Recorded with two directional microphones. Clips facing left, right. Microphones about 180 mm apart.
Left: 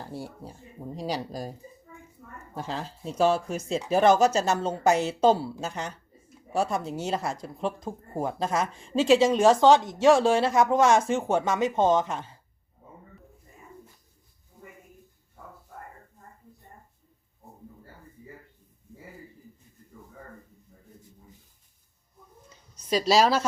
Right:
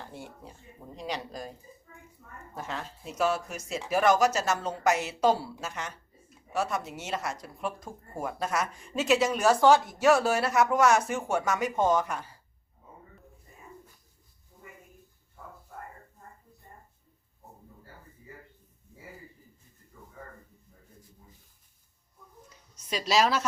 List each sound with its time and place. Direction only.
0.0 s speech: 35° left (ahead or behind)
2.6 s speech: 30° left (ahead or behind)
22.9 s speech: 35° left (ahead or behind)